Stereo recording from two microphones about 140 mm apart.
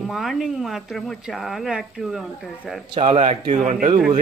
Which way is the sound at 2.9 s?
40° right (ahead or behind).